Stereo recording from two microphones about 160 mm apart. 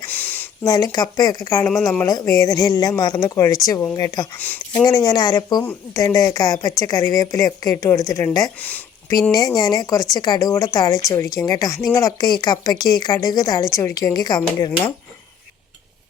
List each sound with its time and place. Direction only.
0.0 s a sound: 10° left (ahead or behind)
0.6 s a woman's voice: 20° left (ahead or behind)
4.4 s speech: 10° left (ahead or behind)
4.7 s a woman's voice: 25° left (ahead or behind)
8.6 s a sound: 10° left (ahead or behind)
9.6 s a woman's voice: 25° left (ahead or behind)